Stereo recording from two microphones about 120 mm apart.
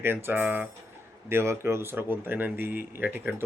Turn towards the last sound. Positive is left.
turn(degrees=-15)  # may be behind; listen again after turning